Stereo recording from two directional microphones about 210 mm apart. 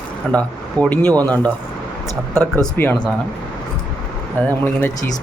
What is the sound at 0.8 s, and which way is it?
Speech, 15° right (ahead or behind).